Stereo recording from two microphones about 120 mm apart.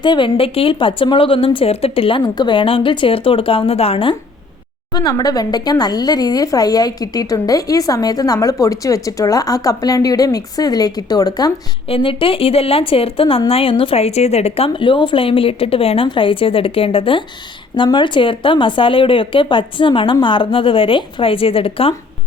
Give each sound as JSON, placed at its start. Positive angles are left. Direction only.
{"t": 0.0, "sound": "speech", "side_deg": 40}
{"t": 4.9, "sound": "speech", "side_deg": 35}
{"t": 11.9, "sound": "speech", "side_deg": 50}